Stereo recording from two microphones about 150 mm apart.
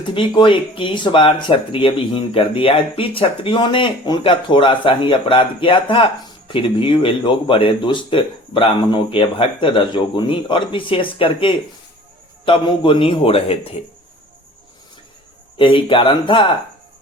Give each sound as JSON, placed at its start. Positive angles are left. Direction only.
{"t": 0.0, "sound": "speech", "side_deg": 35}
{"t": 15.5, "sound": "speech", "side_deg": 35}